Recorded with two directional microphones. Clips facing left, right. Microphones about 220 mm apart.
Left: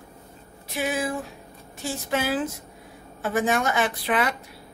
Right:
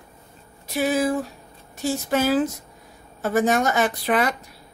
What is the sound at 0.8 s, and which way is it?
Speech, 40° right (ahead or behind).